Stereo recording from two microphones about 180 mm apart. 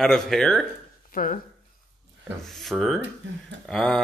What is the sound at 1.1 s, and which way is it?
Speech, 50° left (ahead or behind).